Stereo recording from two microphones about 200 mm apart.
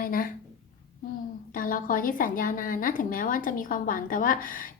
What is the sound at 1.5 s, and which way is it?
A woman's voice, 45° left (ahead or behind).